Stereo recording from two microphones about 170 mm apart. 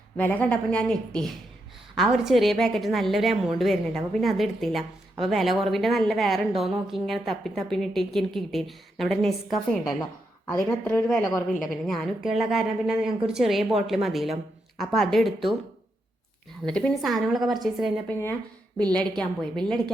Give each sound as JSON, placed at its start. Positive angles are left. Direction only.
{"t": 0.2, "sound": "a woman's voice", "side_deg": 10}
{"t": 11.2, "sound": "a woman's voice", "side_deg": 20}
{"t": 11.6, "sound": "a woman's voice", "side_deg": 0}
{"t": 16.6, "sound": "a woman's voice", "side_deg": 5}
{"t": 18.1, "sound": "a woman's voice", "side_deg": 10}